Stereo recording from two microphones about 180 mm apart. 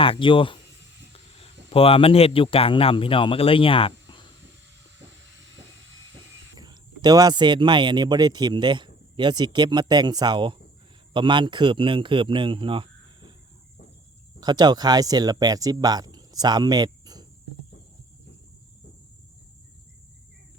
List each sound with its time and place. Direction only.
0.0 s a man's voice: 30° left (ahead or behind)
6.6 s a man's voice: 20° right (ahead or behind)
14.4 s speech: 25° right (ahead or behind)